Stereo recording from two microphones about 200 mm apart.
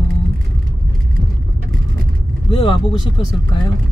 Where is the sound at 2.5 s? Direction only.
25° left (ahead or behind).